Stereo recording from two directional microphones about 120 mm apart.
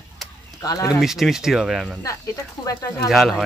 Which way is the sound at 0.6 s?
30° left (ahead or behind).